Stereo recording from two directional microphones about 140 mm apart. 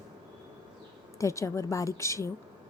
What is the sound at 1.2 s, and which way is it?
A woman's voice, 20° left (ahead or behind).